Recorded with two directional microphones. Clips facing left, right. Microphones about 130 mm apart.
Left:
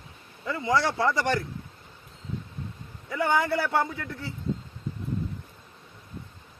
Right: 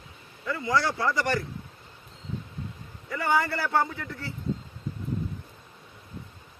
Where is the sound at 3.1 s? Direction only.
20° left (ahead or behind).